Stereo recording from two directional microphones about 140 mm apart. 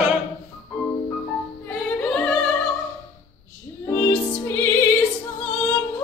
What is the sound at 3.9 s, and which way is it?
Music, 15° left (ahead or behind).